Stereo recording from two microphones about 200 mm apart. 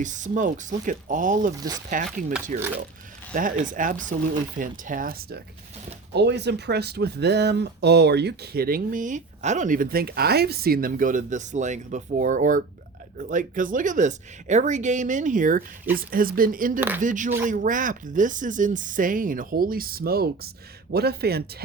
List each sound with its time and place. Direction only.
0.0 s speech: 40° right (ahead or behind)
1.5 s speech: 20° right (ahead or behind)
2.5 s speech: 40° right (ahead or behind)
6.1 s speech: 55° right (ahead or behind)